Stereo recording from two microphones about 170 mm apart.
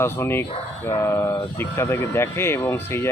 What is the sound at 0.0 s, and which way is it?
Speech, 15° left (ahead or behind).